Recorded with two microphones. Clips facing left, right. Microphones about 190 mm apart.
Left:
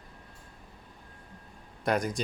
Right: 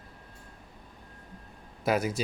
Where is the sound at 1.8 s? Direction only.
5° right (ahead or behind).